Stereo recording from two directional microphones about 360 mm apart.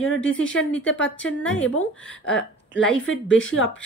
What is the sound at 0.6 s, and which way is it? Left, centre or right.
Speech, centre.